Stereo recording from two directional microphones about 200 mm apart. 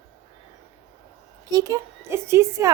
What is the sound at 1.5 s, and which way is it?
A woman's voice, 15° right (ahead or behind).